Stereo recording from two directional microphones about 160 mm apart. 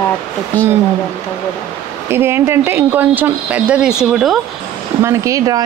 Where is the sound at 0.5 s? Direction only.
10° left (ahead or behind).